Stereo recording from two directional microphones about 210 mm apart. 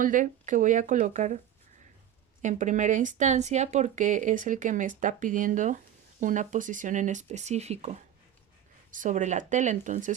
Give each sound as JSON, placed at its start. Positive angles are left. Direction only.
{"t": 0.0, "sound": "speech", "side_deg": -40}
{"t": 2.4, "sound": "speech", "side_deg": -35}